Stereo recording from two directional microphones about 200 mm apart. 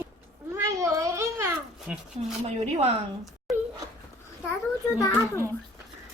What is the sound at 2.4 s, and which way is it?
Speech, 35° right (ahead or behind).